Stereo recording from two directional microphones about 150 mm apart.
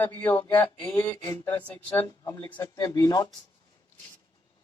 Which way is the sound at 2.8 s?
25° left (ahead or behind).